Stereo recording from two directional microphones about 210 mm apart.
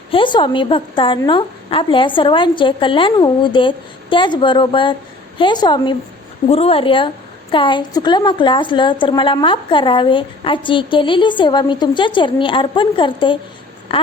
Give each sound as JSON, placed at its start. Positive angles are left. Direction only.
{"t": 0.1, "sound": "a woman's voice", "side_deg": 25}